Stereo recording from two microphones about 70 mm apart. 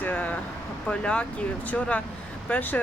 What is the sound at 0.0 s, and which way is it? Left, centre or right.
Vehicle, left.